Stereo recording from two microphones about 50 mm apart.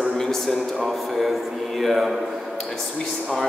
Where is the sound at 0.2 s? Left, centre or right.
Centre.